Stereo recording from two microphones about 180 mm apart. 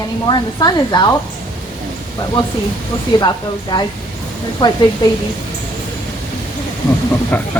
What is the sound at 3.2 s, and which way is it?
Speech, 25° left (ahead or behind).